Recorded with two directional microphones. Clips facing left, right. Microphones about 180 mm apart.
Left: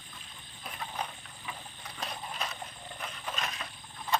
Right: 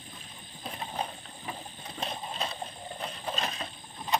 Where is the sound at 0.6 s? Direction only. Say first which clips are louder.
Right 3 dB; 30° right (ahead or behind).